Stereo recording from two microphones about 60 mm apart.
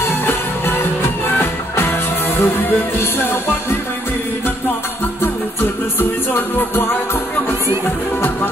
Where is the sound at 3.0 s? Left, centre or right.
Left.